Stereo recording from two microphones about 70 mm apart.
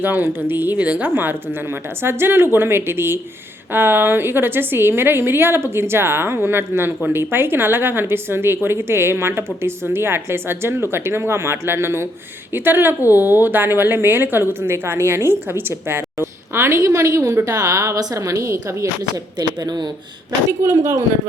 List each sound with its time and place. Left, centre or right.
0.0 s a woman's voice: right
19.4 s speech: right
20.7 s speech: right